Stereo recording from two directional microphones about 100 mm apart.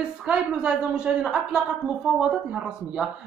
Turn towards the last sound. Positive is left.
turn(degrees=-5)  # may be behind; listen again after turning